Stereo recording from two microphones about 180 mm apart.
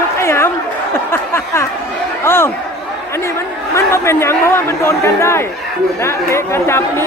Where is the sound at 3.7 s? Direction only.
15° left (ahead or behind).